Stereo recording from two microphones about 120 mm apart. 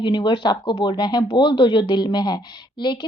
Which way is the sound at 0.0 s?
40° left (ahead or behind).